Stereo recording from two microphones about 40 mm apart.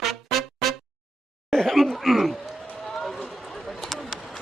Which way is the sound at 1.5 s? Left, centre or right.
Centre.